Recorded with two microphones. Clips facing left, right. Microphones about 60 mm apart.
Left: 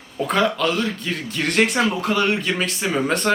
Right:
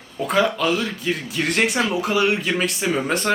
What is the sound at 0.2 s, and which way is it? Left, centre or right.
Speech, centre.